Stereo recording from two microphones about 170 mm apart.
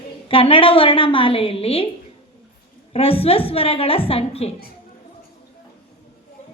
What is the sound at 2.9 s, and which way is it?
A woman's voice, 35° left (ahead or behind).